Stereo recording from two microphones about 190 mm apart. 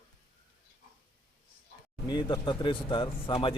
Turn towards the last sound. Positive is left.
turn(degrees=25)  # may be behind; listen again after turning